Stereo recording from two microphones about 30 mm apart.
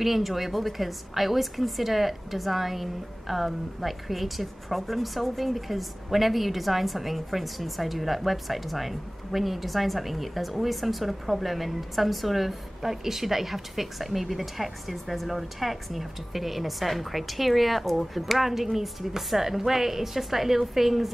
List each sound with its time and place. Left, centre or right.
0.0 s a woman's voice: centre